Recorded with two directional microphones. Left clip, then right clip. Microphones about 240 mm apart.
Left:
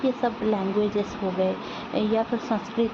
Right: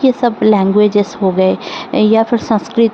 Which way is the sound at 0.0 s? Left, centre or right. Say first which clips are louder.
Right 13 dB; right.